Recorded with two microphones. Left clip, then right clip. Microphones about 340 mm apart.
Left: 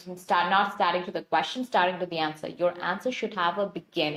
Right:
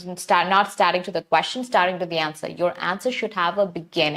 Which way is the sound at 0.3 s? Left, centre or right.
Right.